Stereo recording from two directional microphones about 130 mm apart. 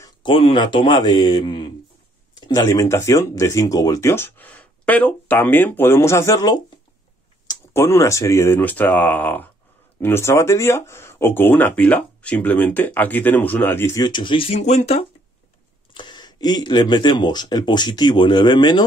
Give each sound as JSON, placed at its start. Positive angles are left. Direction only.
{"t": 0.0, "sound": "speech", "side_deg": 40}
{"t": 2.4, "sound": "speech", "side_deg": 25}
{"t": 7.7, "sound": "speech", "side_deg": 20}
{"t": 14.0, "sound": "speech", "side_deg": 40}
{"t": 14.6, "sound": "speech", "side_deg": 60}
{"t": 15.9, "sound": "speech", "side_deg": 35}